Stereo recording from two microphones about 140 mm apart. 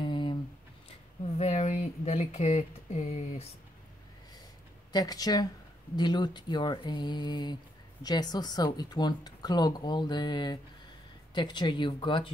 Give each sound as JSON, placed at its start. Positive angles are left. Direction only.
{"t": 0.0, "sound": "a sound", "side_deg": 35}
{"t": 1.2, "sound": "speech", "side_deg": 50}
{"t": 4.9, "sound": "speech", "side_deg": 25}